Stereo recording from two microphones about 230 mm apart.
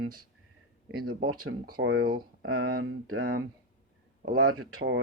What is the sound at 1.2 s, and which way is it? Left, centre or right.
Speech, right.